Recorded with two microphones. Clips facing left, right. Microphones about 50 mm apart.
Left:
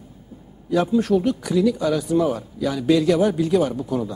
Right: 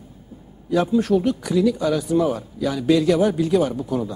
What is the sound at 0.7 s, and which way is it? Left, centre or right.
Speech, centre.